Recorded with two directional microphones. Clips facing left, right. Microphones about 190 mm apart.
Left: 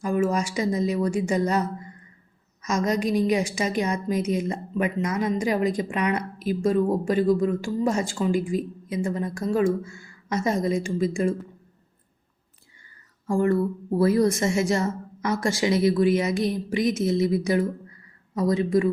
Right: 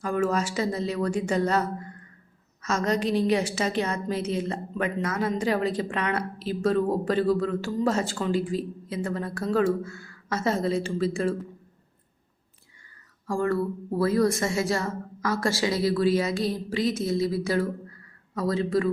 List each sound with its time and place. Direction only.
0.0 s speech: 10° left (ahead or behind)
13.2 s a woman's voice: 20° left (ahead or behind)